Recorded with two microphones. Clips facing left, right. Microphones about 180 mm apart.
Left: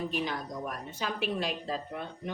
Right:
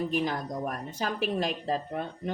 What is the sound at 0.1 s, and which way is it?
Speech, 45° right (ahead or behind).